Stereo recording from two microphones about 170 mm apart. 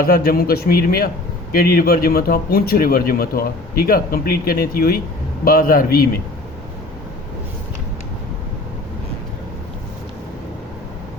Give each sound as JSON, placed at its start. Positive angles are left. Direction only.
{"t": 0.0, "sound": "a man's voice", "side_deg": 60}